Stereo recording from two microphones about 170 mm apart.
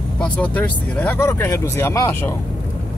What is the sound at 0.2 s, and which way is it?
Speech, 10° left (ahead or behind).